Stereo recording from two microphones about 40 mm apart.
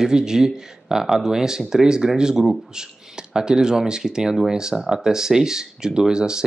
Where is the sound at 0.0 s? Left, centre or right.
Centre.